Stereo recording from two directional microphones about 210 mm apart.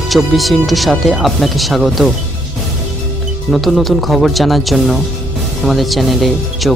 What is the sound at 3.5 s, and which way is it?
Speech, centre (ahead or behind).